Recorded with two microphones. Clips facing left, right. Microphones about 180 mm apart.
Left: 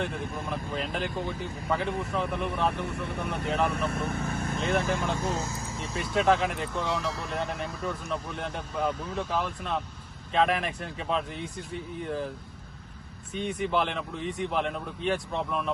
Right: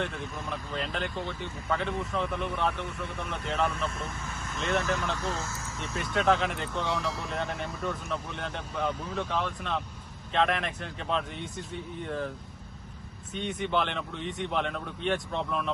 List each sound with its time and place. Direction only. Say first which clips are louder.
0.2 s speech: left 3 dB; 55° left (ahead or behind)
0.5 s speech: left 1 dB; 5° left (ahead or behind)
2.5 s speech: left 2 dB; 65° left (ahead or behind)
5.1 s speech: left 3 dB; 20° left (ahead or behind)
6.0 s speech: left 2 dB; centre (ahead or behind)
13.3 s speech: left 2 dB; centre (ahead or behind)